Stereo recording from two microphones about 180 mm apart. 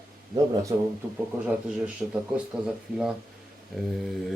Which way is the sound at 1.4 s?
5° right (ahead or behind).